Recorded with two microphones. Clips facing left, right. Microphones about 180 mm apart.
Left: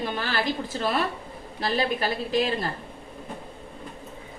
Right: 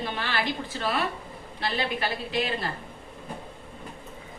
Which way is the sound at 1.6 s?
40° left (ahead or behind).